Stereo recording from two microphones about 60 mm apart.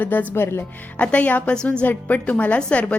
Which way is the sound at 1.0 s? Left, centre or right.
Left.